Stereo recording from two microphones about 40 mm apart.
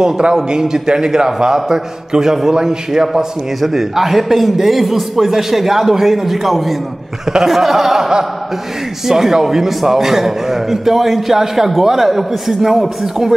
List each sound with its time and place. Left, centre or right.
0.0 s a man's voice: centre